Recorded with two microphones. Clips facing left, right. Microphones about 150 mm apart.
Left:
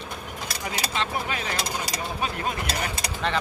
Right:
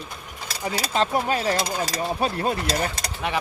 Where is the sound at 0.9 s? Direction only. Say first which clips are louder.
Right 9 dB; 35° right (ahead or behind).